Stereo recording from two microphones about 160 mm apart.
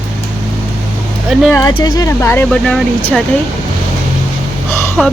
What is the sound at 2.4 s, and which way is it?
Speech, 5° left (ahead or behind).